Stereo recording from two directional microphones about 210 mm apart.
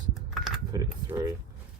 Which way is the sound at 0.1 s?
Centre (ahead or behind).